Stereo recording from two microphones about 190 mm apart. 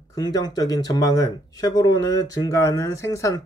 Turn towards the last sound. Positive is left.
turn(degrees=15)  # may be behind; listen again after turning